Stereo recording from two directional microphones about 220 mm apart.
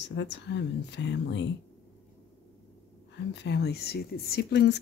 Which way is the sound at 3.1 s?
50° left (ahead or behind).